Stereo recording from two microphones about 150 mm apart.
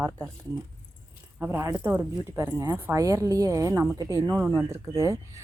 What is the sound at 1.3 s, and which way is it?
Speech, 15° right (ahead or behind).